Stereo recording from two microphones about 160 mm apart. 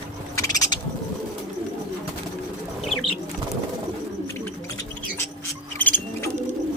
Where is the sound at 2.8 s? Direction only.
Centre (ahead or behind).